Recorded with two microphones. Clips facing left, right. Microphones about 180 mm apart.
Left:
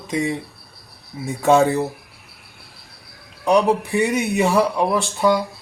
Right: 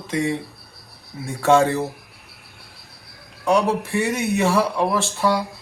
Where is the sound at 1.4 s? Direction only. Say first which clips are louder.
Left 1 dB; 15° left (ahead or behind).